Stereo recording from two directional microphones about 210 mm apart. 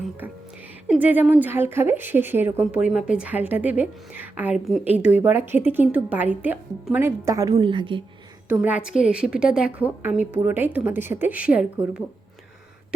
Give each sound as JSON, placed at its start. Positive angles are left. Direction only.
{"t": 0.9, "sound": "a woman's voice", "side_deg": -10}
{"t": 8.4, "sound": "a woman's voice", "side_deg": -5}